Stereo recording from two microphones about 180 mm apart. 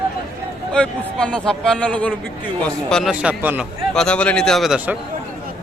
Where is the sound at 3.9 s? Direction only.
5° left (ahead or behind).